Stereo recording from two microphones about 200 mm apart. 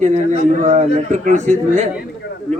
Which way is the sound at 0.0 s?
35° right (ahead or behind).